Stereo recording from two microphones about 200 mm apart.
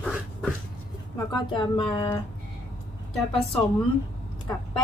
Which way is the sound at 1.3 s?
25° left (ahead or behind).